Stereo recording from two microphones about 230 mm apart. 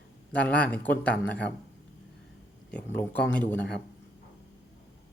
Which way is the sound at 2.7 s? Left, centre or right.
Centre.